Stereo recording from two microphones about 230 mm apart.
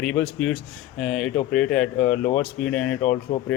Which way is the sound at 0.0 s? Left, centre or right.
Centre.